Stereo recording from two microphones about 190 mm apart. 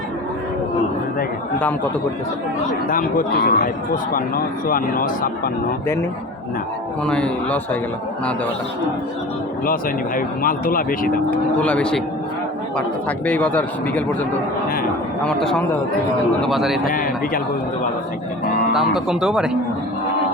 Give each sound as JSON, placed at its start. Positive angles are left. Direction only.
{"t": 2.9, "sound": "speech", "side_deg": 50}
{"t": 7.0, "sound": "a man's voice", "side_deg": 5}
{"t": 10.2, "sound": "speech", "side_deg": 45}
{"t": 11.6, "sound": "a man's voice", "side_deg": 5}
{"t": 16.8, "sound": "speech", "side_deg": 50}
{"t": 18.7, "sound": "speech", "side_deg": 0}